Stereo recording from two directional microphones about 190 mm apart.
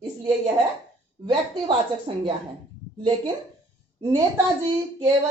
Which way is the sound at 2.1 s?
25° right (ahead or behind).